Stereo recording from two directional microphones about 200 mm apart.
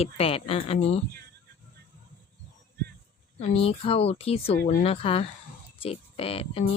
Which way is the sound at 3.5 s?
30° left (ahead or behind).